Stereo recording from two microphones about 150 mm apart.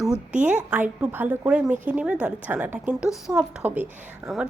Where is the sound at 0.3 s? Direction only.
55° right (ahead or behind).